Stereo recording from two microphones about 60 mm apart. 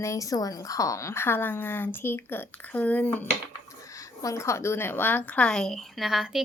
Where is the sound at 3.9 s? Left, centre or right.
Left.